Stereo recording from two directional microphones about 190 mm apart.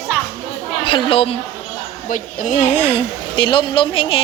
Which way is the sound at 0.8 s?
25° left (ahead or behind).